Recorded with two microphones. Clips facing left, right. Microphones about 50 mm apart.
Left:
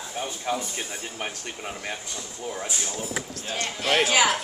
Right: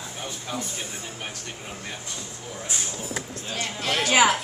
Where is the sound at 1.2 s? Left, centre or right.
Left.